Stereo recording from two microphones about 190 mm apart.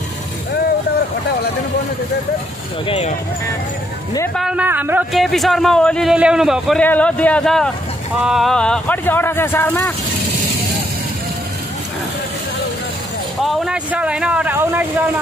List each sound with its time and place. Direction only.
2.9 s speech: 35° left (ahead or behind)
4.4 s a man's voice: 5° right (ahead or behind); by 9.9 s 10° left (ahead or behind)
13.4 s speech: centre (ahead or behind)